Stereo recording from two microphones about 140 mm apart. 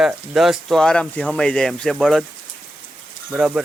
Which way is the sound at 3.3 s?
5° right (ahead or behind).